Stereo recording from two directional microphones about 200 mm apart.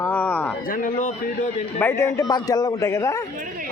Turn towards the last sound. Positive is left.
turn(degrees=15)  # may be behind; listen again after turning